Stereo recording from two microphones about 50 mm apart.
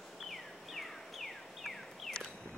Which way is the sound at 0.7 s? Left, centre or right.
Centre.